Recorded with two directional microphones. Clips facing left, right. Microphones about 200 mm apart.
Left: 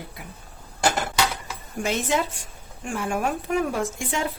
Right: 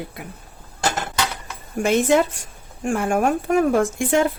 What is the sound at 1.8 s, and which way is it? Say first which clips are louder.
Speech: right 8 dB; 50° right (ahead or behind).